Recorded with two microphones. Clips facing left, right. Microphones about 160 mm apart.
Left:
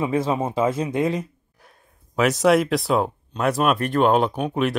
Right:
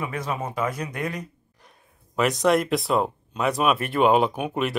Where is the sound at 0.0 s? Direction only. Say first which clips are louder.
Left 7 dB; 25° left (ahead or behind).